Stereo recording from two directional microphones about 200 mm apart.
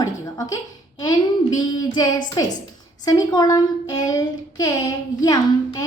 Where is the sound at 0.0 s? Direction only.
20° left (ahead or behind).